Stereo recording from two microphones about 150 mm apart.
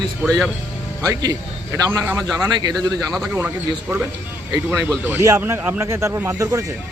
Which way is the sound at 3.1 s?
Centre (ahead or behind).